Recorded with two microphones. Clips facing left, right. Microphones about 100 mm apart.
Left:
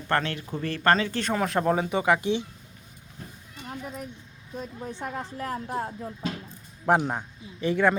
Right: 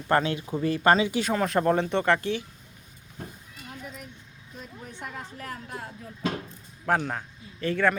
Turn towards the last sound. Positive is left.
turn(degrees=15)  # may be behind; listen again after turning